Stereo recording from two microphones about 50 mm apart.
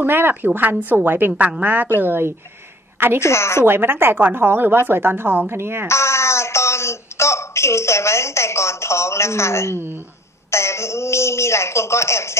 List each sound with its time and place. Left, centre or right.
0.0 s a woman's voice: right
3.2 s a woman's voice: left
3.6 s a woman's voice: right
5.9 s a woman's voice: left